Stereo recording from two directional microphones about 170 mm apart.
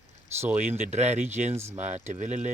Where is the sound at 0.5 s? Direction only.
40° right (ahead or behind).